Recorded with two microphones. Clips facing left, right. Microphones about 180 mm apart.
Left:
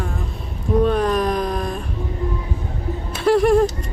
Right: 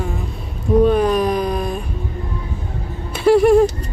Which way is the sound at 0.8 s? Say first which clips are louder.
Right 3 dB; 5° right (ahead or behind).